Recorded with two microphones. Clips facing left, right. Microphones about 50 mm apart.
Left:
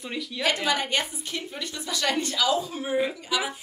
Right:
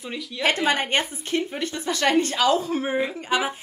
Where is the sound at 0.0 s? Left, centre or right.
Centre.